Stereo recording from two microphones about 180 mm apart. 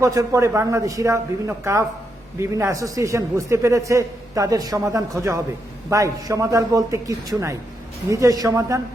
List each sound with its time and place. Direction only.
0.0 s a man's voice: 20° right (ahead or behind)